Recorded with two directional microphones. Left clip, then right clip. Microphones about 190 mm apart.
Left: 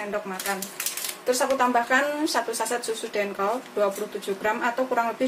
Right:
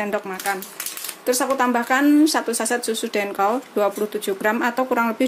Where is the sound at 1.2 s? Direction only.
55° right (ahead or behind).